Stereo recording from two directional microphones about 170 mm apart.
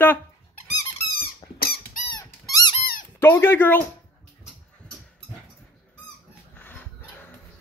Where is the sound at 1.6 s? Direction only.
60° left (ahead or behind).